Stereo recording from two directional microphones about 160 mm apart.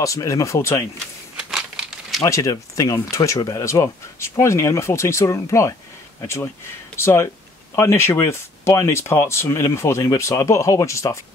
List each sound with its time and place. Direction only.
0.0 s speech: 20° left (ahead or behind)
1.3 s crumpling: 5° right (ahead or behind)
2.2 s speech: 20° left (ahead or behind)